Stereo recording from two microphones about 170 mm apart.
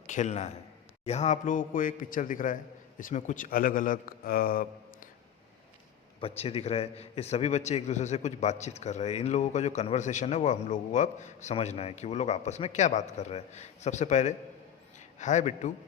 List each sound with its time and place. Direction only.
0.1 s a man's voice: 45° left (ahead or behind)
6.1 s a man's voice: 35° left (ahead or behind)